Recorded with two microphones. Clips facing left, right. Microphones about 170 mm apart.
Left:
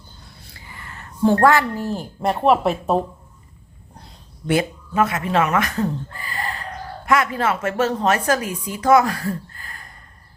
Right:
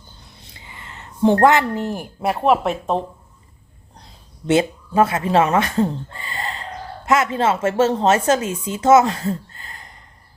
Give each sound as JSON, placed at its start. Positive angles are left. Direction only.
{"t": 0.3, "sound": "a sound", "side_deg": -20}
{"t": 2.2, "sound": "speech", "side_deg": 0}
{"t": 4.4, "sound": "speech", "side_deg": -25}